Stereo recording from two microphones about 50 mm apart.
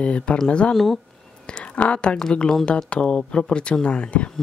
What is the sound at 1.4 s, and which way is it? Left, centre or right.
Speech, centre.